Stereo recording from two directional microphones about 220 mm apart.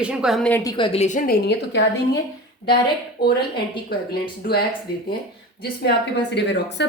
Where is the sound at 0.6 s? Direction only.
20° left (ahead or behind).